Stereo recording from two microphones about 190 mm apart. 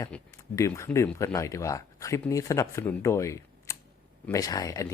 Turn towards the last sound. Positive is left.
turn(degrees=20)  # may be behind; listen again after turning